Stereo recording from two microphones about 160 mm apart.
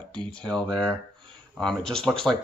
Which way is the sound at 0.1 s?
5° left (ahead or behind).